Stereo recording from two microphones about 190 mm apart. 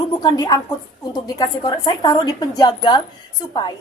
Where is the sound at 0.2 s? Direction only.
20° left (ahead or behind).